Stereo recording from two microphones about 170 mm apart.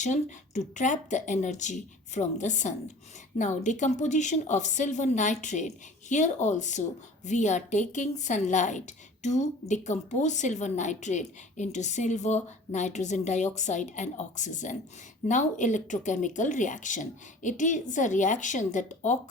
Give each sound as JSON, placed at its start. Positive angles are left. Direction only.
{"t": 0.0, "sound": "a woman's voice", "side_deg": 45}